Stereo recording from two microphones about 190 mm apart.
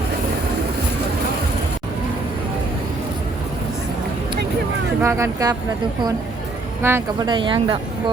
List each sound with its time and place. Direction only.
4.9 s speech: 15° right (ahead or behind)
6.8 s speech: 10° right (ahead or behind)
7.3 s speech: 25° right (ahead or behind)